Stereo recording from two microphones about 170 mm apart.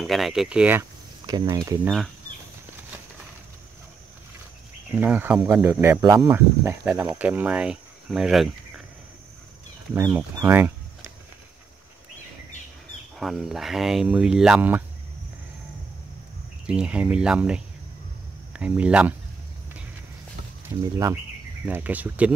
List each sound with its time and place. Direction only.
0.0 s speech: centre (ahead or behind)
1.2 s speech: 25° right (ahead or behind)
4.9 s speech: 10° right (ahead or behind)
9.9 s speech: 15° right (ahead or behind)
13.2 s speech: centre (ahead or behind)
16.6 s speech: 5° right (ahead or behind)
21.6 s speech: 10° right (ahead or behind)